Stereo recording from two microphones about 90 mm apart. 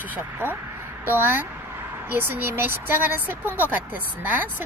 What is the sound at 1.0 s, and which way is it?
Speech, 25° right (ahead or behind).